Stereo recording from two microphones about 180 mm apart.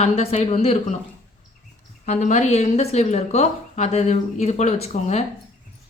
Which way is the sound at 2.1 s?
40° left (ahead or behind).